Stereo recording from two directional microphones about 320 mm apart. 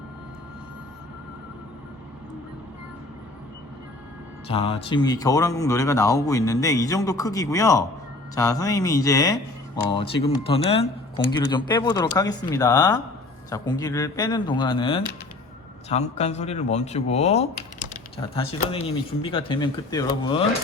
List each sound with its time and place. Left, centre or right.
4.4 s speech: centre